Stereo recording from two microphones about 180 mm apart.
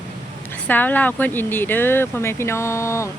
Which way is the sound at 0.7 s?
10° left (ahead or behind).